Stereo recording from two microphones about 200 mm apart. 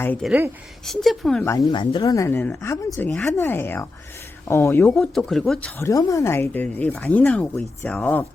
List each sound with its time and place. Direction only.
0.0 s speech: 10° left (ahead or behind)
0.3 s speech: 10° right (ahead or behind)
0.9 s speech: centre (ahead or behind)
1.5 s speech: 20° left (ahead or behind); by 5.7 s centre (ahead or behind)
5.8 s speech: 15° left (ahead or behind)